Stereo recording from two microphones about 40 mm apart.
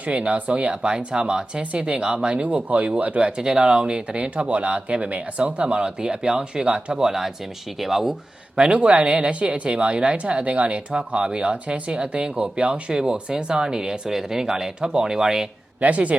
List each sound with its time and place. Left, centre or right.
0.0 s speech: right
0.8 s speech: right
7.1 s speech: centre
8.5 s speech: right
12.9 s speech: centre
15.8 s speech: right